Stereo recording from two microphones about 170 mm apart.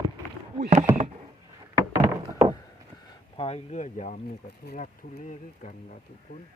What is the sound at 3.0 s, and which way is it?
Speech, 35° left (ahead or behind).